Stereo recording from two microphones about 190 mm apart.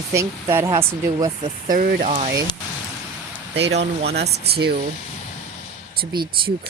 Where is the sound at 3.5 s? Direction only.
65° right (ahead or behind).